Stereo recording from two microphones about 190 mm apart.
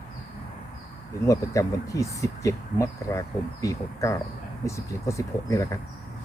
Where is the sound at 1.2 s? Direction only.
15° left (ahead or behind).